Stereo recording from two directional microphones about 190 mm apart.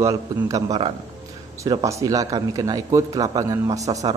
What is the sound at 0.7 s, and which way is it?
Speech, 30° right (ahead or behind).